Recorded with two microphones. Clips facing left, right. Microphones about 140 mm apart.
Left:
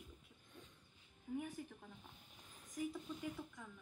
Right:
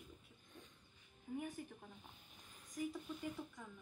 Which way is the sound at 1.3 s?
10° right (ahead or behind).